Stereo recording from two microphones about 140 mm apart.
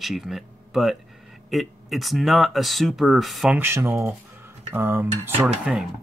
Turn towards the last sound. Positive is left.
turn(degrees=-5)  # may be behind; listen again after turning